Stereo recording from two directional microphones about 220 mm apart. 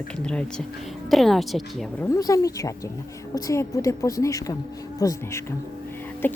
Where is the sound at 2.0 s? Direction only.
15° left (ahead or behind).